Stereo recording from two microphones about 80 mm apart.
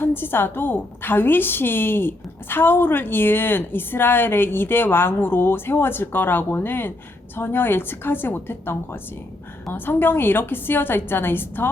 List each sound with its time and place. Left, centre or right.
0.0 s a woman's voice: left